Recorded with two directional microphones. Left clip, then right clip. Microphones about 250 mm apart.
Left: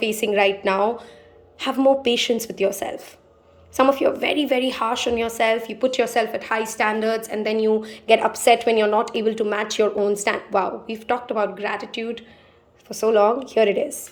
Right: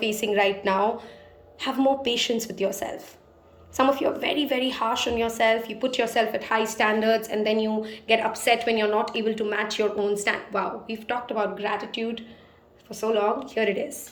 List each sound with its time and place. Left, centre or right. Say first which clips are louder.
0.0 s a woman's voice: left 4 dB; centre